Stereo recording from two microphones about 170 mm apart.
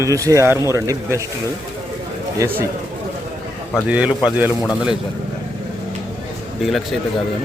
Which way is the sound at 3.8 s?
5° right (ahead or behind).